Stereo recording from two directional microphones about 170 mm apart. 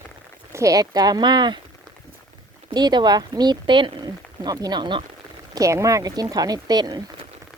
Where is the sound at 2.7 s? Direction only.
25° right (ahead or behind).